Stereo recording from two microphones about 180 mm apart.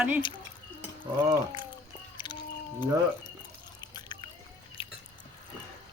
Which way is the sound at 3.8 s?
25° left (ahead or behind).